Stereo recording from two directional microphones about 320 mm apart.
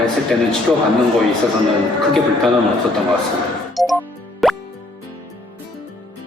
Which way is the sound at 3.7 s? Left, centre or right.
Centre.